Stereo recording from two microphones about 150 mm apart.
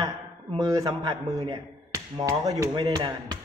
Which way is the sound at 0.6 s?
20° right (ahead or behind).